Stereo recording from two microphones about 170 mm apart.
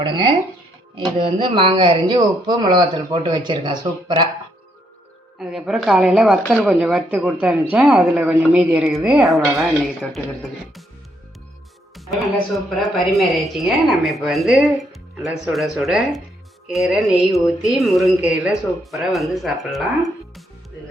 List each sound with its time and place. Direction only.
0.0 s speech: 30° right (ahead or behind)
5.4 s speech: centre (ahead or behind)
12.5 s speech: centre (ahead or behind)